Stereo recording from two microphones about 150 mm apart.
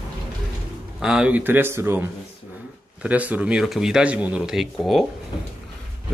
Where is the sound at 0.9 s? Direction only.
5° right (ahead or behind).